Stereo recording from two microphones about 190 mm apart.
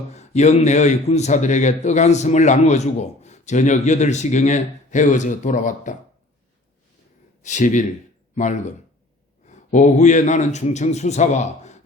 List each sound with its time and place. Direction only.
0.1 s a man's voice: 35° left (ahead or behind)
7.4 s a man's voice: 40° left (ahead or behind)